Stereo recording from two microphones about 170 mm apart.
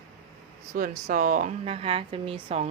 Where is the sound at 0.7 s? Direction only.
50° right (ahead or behind).